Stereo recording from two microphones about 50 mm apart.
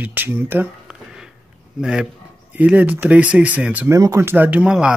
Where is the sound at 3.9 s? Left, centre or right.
Right.